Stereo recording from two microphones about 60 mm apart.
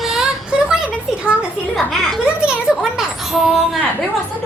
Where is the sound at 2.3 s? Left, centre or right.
Centre.